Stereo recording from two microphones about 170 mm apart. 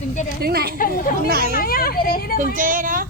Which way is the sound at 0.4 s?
65° right (ahead or behind).